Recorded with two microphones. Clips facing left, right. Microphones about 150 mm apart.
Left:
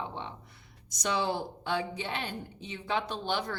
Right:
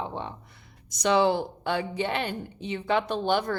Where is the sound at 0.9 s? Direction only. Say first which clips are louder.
Right 8 dB; 90° right.